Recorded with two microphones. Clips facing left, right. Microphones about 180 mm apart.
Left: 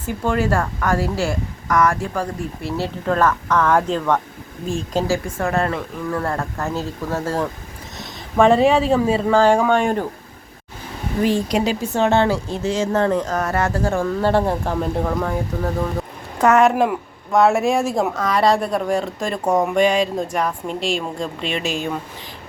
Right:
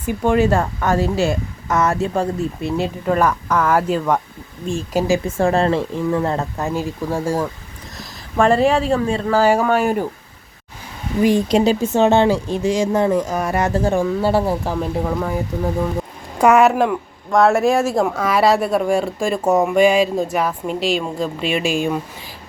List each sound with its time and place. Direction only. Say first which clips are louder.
0.0 s speech: right 4 dB; 20° right (ahead or behind); by 5.0 s centre (ahead or behind)
5.0 s speech: right 3 dB; 20° right (ahead or behind)
5.4 s speech: right 7 dB; 30° right (ahead or behind)
6.1 s speech: right 1 dB; 20° right (ahead or behind)
7.9 s speech: left 2 dB; centre (ahead or behind)
9.3 s speech: even; 5° right (ahead or behind)
11.4 s speech: right 5 dB; 25° right (ahead or behind); by 21.9 s 10° right (ahead or behind)